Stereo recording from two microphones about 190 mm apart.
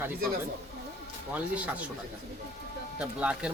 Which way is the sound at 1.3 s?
5° right (ahead or behind).